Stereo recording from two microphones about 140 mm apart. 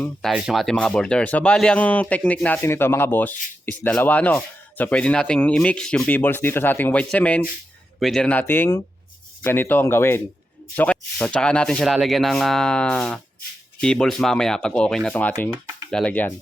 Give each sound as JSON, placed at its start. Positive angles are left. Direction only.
{"t": 0.2, "sound": "speech", "side_deg": 0}